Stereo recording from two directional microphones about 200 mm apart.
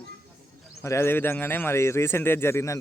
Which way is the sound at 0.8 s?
15° left (ahead or behind).